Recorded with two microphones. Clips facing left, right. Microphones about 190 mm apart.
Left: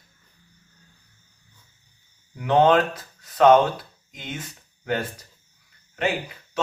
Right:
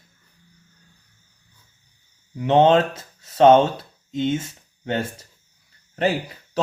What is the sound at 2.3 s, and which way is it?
Speech, 25° right (ahead or behind).